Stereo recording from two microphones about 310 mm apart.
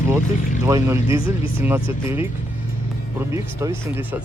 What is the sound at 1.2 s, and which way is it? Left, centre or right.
Speech, left.